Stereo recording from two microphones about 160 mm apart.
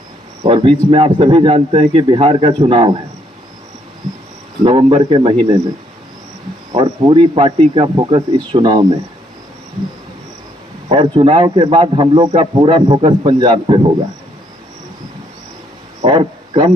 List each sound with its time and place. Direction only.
0.4 s speech: 35° right (ahead or behind)
4.0 s cricket: centre (ahead or behind)
4.6 s speech: 35° right (ahead or behind)
6.7 s speech: 30° right (ahead or behind)
10.8 s speech: 30° right (ahead or behind)
16.0 s a sound: 30° right (ahead or behind)